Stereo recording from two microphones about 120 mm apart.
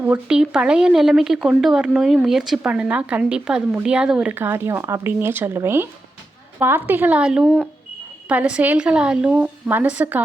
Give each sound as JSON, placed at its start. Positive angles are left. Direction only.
{"t": 0.0, "sound": "speech", "side_deg": -10}